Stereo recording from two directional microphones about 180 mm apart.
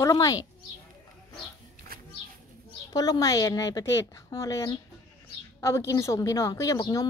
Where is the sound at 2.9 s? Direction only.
20° left (ahead or behind).